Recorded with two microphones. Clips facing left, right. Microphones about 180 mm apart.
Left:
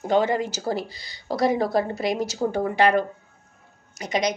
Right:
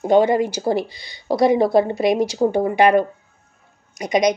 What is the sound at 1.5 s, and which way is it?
A woman's voice, 25° right (ahead or behind).